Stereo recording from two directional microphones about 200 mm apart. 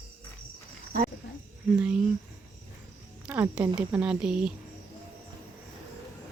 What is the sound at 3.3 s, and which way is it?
Speech, 5° right (ahead or behind).